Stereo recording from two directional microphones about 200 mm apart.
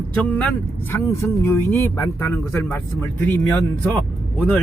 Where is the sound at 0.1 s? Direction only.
10° left (ahead or behind).